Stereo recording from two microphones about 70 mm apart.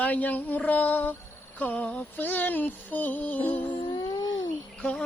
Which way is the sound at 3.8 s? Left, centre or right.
Left.